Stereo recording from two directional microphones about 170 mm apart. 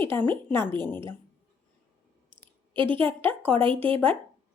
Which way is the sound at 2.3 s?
30° right (ahead or behind).